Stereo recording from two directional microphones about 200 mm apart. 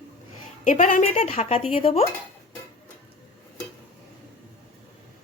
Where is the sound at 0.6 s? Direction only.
40° left (ahead or behind).